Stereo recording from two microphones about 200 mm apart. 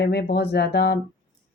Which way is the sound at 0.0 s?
50° left (ahead or behind).